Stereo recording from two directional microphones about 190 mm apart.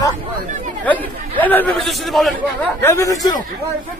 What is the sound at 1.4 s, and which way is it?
Speech, 10° left (ahead or behind).